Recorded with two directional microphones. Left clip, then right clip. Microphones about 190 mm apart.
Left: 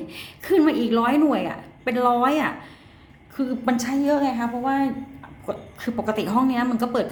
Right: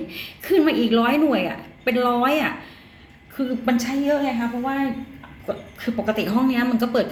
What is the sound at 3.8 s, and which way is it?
Speech, 20° left (ahead or behind).